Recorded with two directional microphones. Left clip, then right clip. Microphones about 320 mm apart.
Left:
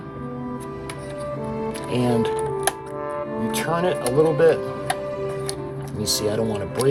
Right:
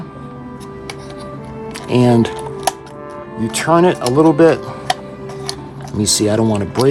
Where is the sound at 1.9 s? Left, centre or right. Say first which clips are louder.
Right 9 dB; right.